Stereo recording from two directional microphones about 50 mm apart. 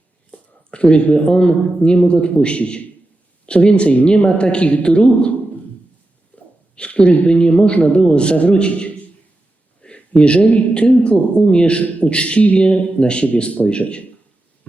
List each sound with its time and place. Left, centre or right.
0.3 s a man's voice: left
6.3 s a sound: left
6.7 s a man's voice: left